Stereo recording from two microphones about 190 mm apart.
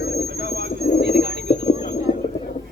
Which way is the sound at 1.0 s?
55° right (ahead or behind).